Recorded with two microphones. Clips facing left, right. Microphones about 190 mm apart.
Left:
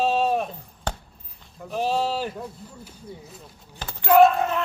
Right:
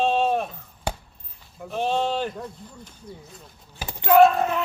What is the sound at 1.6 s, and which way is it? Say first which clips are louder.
Speech: even; centre (ahead or behind).